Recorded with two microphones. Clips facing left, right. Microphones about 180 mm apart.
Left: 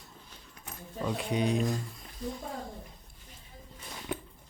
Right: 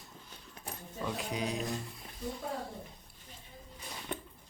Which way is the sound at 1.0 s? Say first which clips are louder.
Left 6 dB; centre (ahead or behind).